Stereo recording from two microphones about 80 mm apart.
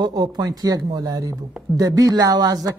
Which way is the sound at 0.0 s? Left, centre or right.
Right.